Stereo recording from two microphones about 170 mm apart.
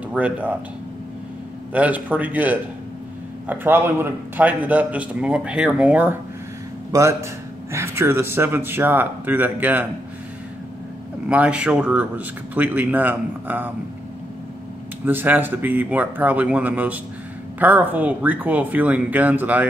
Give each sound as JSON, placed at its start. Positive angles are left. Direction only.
{"t": 0.1, "sound": "a man's voice", "side_deg": -10}
{"t": 1.7, "sound": "a man's voice", "side_deg": -10}
{"t": 11.2, "sound": "a man's voice", "side_deg": -5}
{"t": 15.0, "sound": "a man's voice", "side_deg": -10}